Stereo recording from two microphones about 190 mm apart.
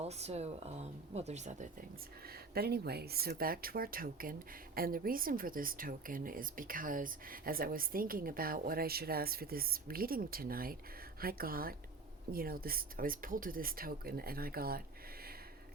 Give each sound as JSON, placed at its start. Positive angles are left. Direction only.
{"t": 0.0, "sound": "speech", "side_deg": -35}
{"t": 2.6, "sound": "speech", "side_deg": -55}